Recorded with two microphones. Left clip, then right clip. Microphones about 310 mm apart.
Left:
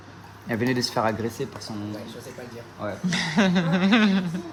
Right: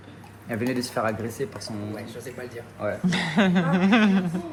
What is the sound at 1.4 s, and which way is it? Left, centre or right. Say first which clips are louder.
Speech: right 1 dB; centre.